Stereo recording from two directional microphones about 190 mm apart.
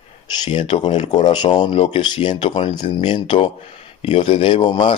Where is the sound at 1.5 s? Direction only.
25° left (ahead or behind).